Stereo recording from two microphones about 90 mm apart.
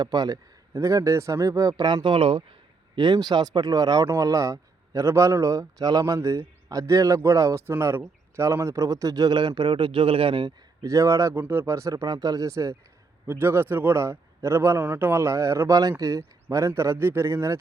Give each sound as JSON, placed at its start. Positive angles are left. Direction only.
{"t": 0.0, "sound": "speech", "side_deg": -45}
{"t": 0.7, "sound": "a man's voice", "side_deg": -35}
{"t": 1.8, "sound": "speech", "side_deg": -60}
{"t": 4.1, "sound": "a man's voice", "side_deg": -35}
{"t": 6.1, "sound": "a man's voice", "side_deg": -35}
{"t": 10.8, "sound": "a man's voice", "side_deg": -35}